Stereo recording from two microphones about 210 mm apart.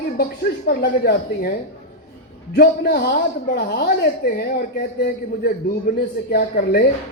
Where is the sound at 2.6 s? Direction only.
45° left (ahead or behind).